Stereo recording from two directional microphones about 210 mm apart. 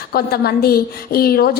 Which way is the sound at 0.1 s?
45° left (ahead or behind).